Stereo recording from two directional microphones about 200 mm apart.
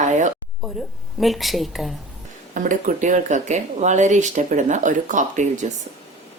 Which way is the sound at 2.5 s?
40° right (ahead or behind).